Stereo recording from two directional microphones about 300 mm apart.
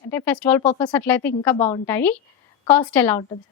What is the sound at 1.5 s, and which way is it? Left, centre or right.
Speech, left.